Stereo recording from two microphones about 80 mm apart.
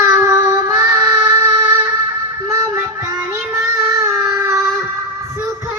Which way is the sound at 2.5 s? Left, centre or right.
Right.